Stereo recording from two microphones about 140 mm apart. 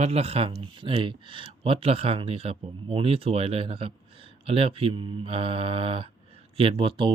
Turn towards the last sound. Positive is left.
turn(degrees=-35)  # may be behind; listen again after turning